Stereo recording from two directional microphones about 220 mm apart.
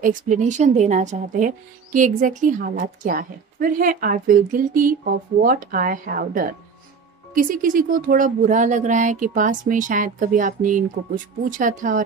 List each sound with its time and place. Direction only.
0.0 s speech: 35° right (ahead or behind)